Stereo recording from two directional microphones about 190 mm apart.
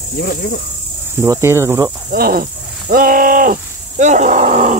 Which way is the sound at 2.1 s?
50° right (ahead or behind).